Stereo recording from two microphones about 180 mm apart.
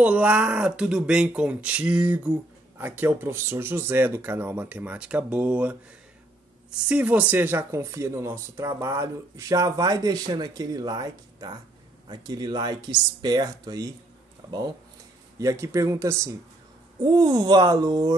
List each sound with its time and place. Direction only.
0.0 s speech: 5° right (ahead or behind)
6.9 s speech: 5° right (ahead or behind)
15.3 s speech: 15° right (ahead or behind)